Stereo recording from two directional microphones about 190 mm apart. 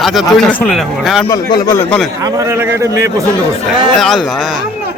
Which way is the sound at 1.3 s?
15° left (ahead or behind).